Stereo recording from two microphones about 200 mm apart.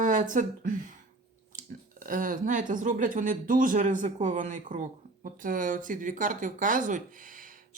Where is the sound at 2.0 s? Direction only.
40° right (ahead or behind).